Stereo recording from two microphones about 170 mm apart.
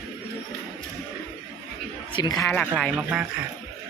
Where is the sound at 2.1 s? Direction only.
25° left (ahead or behind).